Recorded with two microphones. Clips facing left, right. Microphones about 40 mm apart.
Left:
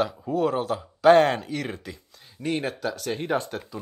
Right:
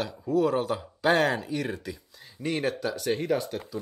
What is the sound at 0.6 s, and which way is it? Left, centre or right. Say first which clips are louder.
Speech: left 6 dB; centre.